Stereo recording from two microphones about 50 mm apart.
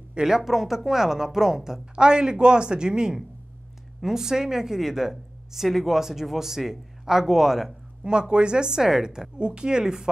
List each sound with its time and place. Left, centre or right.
0.1 s a woman's voice: centre
8.1 s a woman's voice: centre